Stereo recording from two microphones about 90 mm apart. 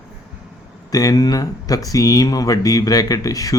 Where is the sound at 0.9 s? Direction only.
40° left (ahead or behind).